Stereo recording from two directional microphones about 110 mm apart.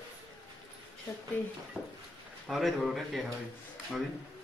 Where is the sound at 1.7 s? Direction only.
25° right (ahead or behind).